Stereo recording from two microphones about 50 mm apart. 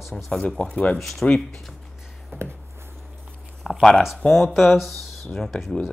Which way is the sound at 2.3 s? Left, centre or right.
Right.